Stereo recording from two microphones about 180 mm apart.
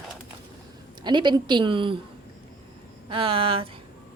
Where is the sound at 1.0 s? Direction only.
25° right (ahead or behind).